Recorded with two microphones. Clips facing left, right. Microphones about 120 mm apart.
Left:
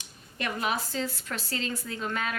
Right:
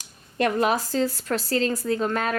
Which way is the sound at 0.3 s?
40° right (ahead or behind).